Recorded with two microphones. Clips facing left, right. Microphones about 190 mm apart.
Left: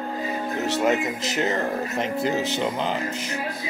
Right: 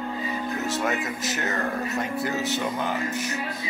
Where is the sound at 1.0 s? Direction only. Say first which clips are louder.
Left 4 dB; 20° left (ahead or behind).